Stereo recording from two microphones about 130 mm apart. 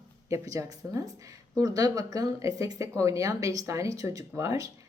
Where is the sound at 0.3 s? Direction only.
25° right (ahead or behind).